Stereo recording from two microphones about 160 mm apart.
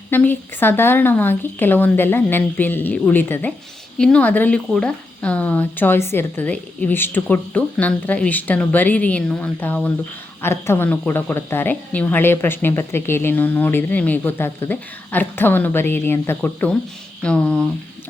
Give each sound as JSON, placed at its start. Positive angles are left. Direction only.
{"t": 0.1, "sound": "speech", "side_deg": 10}